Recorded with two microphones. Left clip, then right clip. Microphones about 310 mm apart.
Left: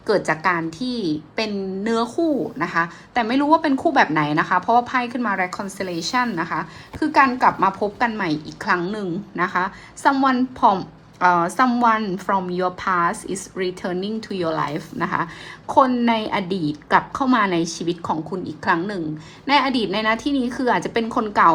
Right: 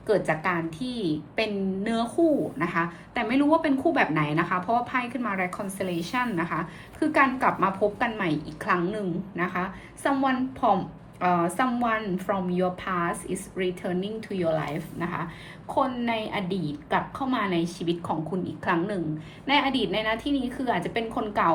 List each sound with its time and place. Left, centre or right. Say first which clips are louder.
0.3 s a woman's voice: left 6 dB; centre